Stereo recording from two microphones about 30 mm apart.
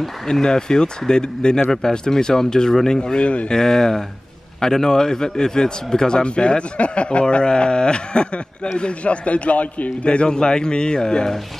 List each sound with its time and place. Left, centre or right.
0.3 s a man's voice: left
1.7 s a man's voice: centre
3.0 s speech: left
3.4 s a man's voice: centre; by 9.8 s left
10.0 s a man's voice: left